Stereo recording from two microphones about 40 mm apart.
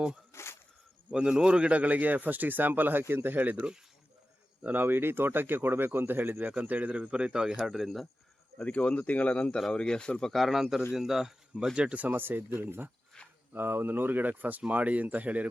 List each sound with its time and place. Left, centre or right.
0.3 s a sound: left
1.1 s speech: right
4.6 s speech: right
6.6 s speech: right
7.5 s speech: centre
8.6 s speech: left
10.3 s a man's voice: centre
11.8 s speech: right
12.0 s speech: right
13.2 s a sound: left
13.5 s speech: right